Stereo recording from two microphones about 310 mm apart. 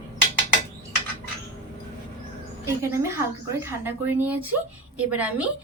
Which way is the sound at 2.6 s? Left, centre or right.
Centre.